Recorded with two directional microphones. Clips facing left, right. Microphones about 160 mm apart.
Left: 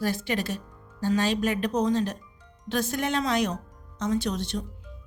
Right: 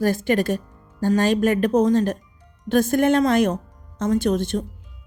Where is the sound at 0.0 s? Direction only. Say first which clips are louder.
Right 8 dB; 50° right (ahead or behind).